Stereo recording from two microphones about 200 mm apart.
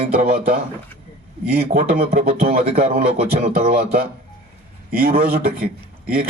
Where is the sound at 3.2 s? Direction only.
30° right (ahead or behind).